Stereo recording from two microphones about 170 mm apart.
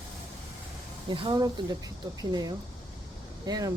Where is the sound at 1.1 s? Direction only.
25° right (ahead or behind).